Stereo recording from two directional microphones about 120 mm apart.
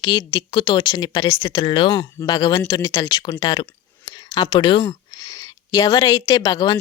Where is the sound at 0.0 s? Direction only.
40° left (ahead or behind).